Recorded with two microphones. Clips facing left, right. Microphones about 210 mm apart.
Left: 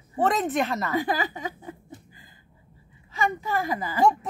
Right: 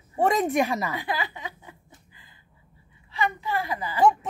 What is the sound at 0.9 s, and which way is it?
A woman's voice, 45° left (ahead or behind).